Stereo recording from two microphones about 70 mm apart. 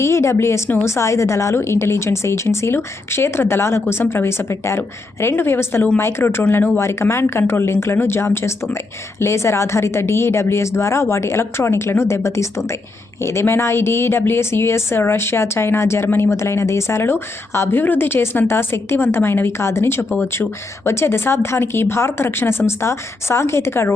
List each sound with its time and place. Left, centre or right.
0.0 s a woman's voice: left